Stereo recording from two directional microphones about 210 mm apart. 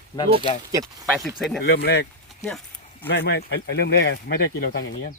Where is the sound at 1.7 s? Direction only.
50° left (ahead or behind).